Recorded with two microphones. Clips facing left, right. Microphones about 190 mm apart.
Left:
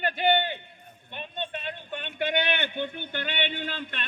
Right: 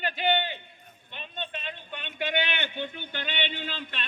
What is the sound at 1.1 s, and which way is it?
A man's voice, 50° left (ahead or behind).